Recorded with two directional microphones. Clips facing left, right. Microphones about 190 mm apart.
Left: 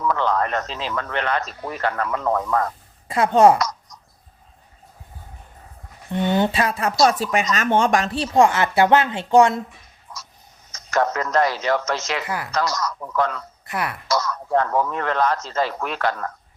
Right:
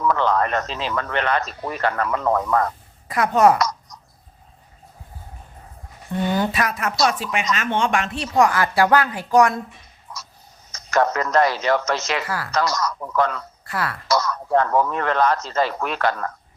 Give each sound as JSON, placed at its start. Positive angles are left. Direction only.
{"t": 0.1, "sound": "speech", "side_deg": -70}
{"t": 3.1, "sound": "speech", "side_deg": 25}
{"t": 6.1, "sound": "speech", "side_deg": 20}
{"t": 10.7, "sound": "speech", "side_deg": -70}
{"t": 13.7, "sound": "speech", "side_deg": 20}
{"t": 14.1, "sound": "speech", "side_deg": -65}